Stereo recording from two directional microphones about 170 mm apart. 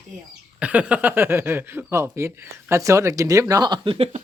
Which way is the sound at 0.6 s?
10° right (ahead or behind).